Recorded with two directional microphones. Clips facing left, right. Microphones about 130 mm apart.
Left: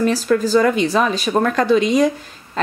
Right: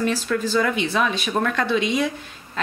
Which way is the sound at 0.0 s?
40° left (ahead or behind).